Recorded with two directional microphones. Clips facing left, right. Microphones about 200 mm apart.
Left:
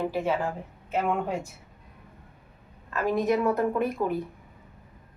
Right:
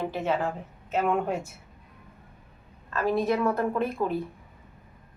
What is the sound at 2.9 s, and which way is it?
Speech, 15° left (ahead or behind).